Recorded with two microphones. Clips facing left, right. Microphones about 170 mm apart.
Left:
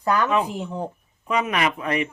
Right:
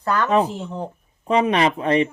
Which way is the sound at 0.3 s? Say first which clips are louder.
Right 4 dB; 35° right (ahead or behind).